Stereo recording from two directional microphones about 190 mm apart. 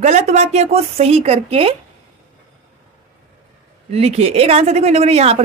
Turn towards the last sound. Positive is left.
turn(degrees=-35)  # may be behind; listen again after turning